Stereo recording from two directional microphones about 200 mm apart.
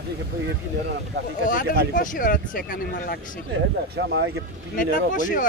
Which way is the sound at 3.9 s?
70° right (ahead or behind).